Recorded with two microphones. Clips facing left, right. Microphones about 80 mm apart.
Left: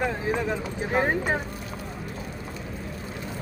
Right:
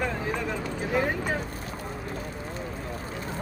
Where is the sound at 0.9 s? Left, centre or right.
Left.